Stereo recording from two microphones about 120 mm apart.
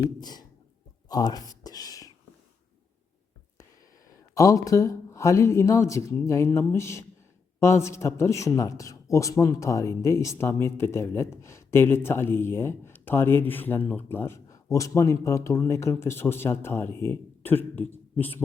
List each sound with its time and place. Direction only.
0.2 s speech: 35° left (ahead or behind)
4.4 s a man's voice: 25° left (ahead or behind)